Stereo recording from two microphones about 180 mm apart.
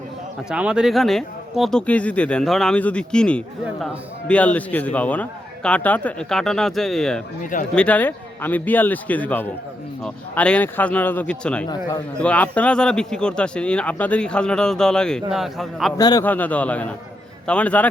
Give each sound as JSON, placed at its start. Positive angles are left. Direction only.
{"t": 0.5, "sound": "a man's voice", "side_deg": -5}
{"t": 16.0, "sound": "a man's voice", "side_deg": 20}
{"t": 16.2, "sound": "a man's voice", "side_deg": 10}